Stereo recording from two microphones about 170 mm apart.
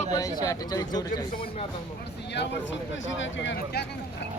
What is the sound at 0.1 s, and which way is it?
Speech, 20° left (ahead or behind).